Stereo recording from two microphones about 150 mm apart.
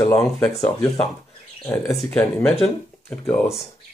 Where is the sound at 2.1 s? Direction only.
5° left (ahead or behind).